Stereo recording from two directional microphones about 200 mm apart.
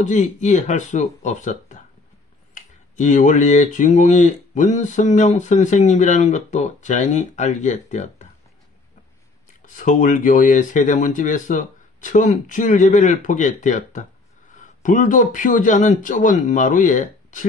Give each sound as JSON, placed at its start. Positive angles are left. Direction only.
{"t": 0.0, "sound": "speech", "side_deg": 35}
{"t": 9.8, "sound": "speech", "side_deg": 40}